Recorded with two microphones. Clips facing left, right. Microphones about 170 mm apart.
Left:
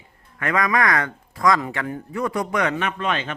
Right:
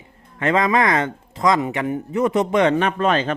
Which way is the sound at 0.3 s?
25° right (ahead or behind).